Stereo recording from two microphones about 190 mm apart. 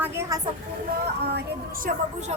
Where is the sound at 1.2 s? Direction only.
60° right (ahead or behind).